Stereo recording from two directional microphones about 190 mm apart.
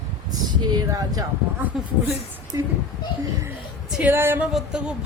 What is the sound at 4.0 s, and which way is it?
Speech, 10° right (ahead or behind).